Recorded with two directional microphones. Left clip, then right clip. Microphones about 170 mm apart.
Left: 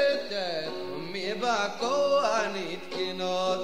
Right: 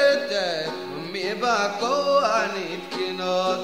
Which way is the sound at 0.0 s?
5° left (ahead or behind).